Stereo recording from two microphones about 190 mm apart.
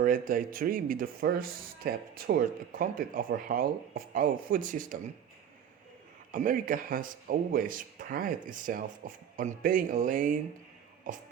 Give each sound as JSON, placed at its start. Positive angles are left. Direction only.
{"t": 0.0, "sound": "speech", "side_deg": -45}
{"t": 6.3, "sound": "speech", "side_deg": -45}